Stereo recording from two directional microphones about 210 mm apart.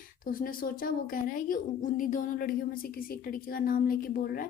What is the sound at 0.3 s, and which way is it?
Speech, 45° left (ahead or behind).